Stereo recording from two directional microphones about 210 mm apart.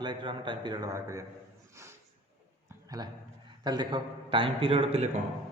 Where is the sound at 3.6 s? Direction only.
20° right (ahead or behind).